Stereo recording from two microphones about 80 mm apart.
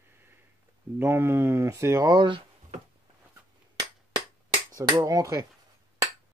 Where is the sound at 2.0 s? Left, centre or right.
Right.